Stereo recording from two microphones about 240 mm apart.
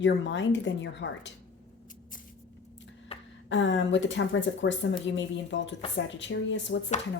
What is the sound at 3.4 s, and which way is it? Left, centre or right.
Speech, left.